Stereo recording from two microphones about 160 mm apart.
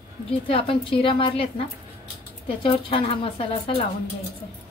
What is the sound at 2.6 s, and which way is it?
A woman's voice, 35° left (ahead or behind).